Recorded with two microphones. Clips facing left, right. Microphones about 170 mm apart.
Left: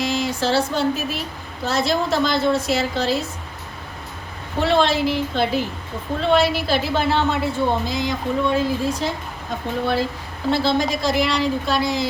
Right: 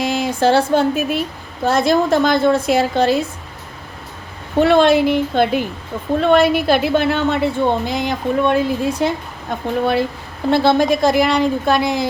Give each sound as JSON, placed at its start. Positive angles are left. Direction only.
{"t": 0.0, "sound": "a sound", "side_deg": -55}
{"t": 1.6, "sound": "a woman's voice", "side_deg": -55}
{"t": 4.6, "sound": "a woman's voice", "side_deg": -55}